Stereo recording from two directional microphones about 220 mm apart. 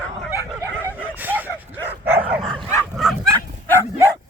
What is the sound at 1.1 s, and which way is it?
Bow-wow, 10° right (ahead or behind).